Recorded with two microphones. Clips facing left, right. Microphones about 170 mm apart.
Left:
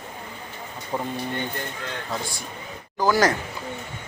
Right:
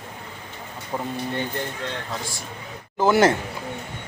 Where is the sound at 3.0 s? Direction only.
25° right (ahead or behind).